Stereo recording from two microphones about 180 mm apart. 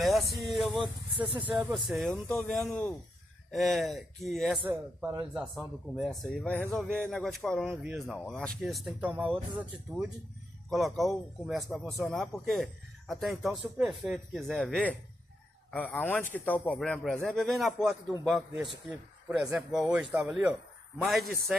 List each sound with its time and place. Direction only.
0.0 s speech: centre (ahead or behind)
0.7 s speech: 30° right (ahead or behind)
1.5 s speech: centre (ahead or behind)
4.6 s speech: 10° right (ahead or behind)
6.0 s speech: 5° left (ahead or behind)